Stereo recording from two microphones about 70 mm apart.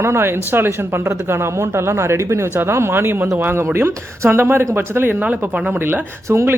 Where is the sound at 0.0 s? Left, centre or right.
Right.